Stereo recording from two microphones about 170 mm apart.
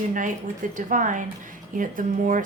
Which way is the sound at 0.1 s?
50° right (ahead or behind).